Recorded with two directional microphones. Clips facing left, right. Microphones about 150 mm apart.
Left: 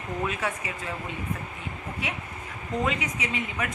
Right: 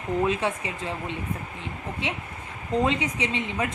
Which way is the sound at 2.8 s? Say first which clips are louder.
Right 2 dB; 30° right (ahead or behind).